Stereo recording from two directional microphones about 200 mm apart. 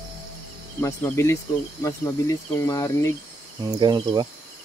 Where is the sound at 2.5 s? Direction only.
15° left (ahead or behind).